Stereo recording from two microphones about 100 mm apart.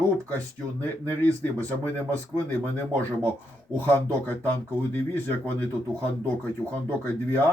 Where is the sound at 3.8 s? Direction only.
20° left (ahead or behind).